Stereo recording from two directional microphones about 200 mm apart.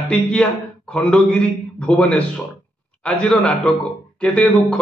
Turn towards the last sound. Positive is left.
turn(degrees=5)  # may be behind; listen again after turning